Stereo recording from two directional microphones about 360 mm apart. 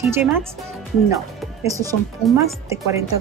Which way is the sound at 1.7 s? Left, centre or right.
Centre.